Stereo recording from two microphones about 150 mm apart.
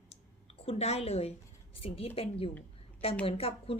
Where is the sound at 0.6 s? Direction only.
45° left (ahead or behind).